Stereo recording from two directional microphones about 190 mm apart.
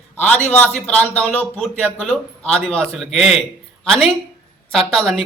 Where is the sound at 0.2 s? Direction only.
5° left (ahead or behind).